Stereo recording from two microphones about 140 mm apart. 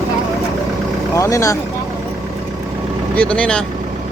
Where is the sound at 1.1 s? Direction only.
20° left (ahead or behind).